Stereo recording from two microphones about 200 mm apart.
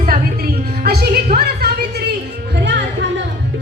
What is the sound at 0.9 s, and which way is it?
Music, 50° right (ahead or behind).